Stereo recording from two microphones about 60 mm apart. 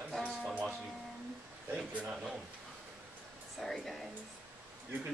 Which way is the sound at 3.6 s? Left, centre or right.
Centre.